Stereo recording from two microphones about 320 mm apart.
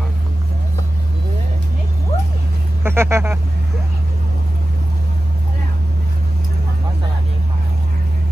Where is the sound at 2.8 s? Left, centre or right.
Centre.